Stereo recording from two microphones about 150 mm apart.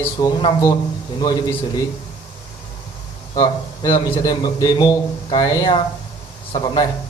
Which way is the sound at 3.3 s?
25° left (ahead or behind).